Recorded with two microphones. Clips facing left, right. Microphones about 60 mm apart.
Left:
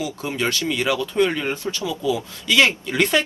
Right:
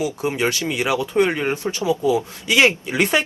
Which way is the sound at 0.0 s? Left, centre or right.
Right.